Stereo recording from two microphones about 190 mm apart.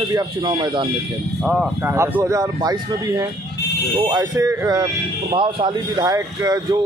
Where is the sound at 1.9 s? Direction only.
15° right (ahead or behind).